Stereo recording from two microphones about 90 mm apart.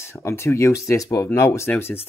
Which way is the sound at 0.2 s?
30° left (ahead or behind).